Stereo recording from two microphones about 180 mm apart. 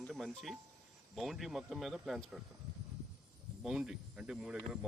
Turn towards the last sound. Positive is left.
turn(degrees=-5)  # may be behind; listen again after turning